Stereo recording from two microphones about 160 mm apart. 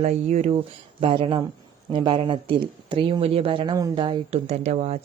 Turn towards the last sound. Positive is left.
turn(degrees=-45)  # may be behind; listen again after turning